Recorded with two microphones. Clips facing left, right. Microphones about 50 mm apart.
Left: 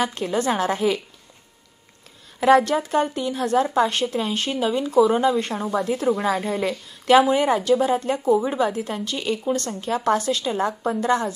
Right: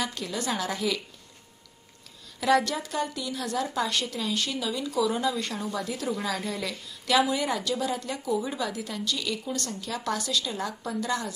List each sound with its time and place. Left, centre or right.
0.0 s speech: left
2.4 s speech: left